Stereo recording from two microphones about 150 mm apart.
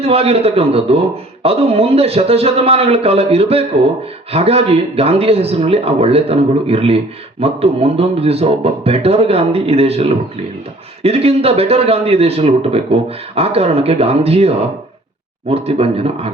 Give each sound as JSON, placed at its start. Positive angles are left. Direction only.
{"t": 0.0, "sound": "speech", "side_deg": -40}